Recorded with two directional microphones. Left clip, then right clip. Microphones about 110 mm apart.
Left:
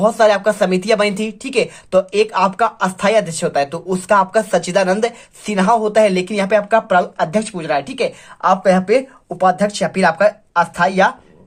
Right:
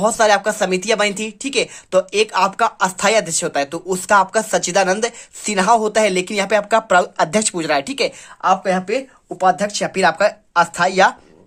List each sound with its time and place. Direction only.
0.0 s a woman's voice: 30° right (ahead or behind)
5.5 s speech: 40° right (ahead or behind)
8.4 s a woman's voice: 10° right (ahead or behind); by 11.1 s 35° right (ahead or behind)